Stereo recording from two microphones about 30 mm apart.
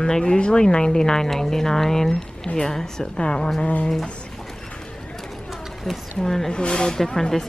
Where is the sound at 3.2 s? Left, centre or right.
Left.